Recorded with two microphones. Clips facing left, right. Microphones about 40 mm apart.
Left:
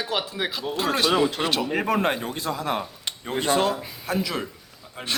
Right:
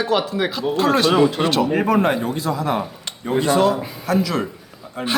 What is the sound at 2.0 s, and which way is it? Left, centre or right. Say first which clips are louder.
Speech: right 5 dB; right.